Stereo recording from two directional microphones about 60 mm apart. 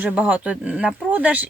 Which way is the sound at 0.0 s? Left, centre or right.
Right.